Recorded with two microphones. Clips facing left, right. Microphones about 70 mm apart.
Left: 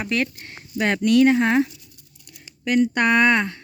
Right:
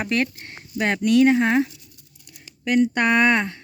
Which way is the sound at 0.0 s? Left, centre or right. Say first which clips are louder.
Right 1 dB; right.